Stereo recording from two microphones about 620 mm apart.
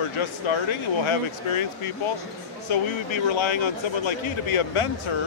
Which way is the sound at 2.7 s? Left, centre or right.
Left.